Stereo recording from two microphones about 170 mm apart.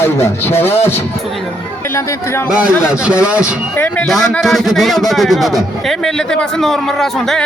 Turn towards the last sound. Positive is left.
turn(degrees=0)  # may be behind; listen again after turning